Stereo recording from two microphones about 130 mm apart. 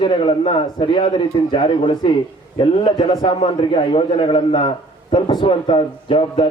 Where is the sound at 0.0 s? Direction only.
40° left (ahead or behind).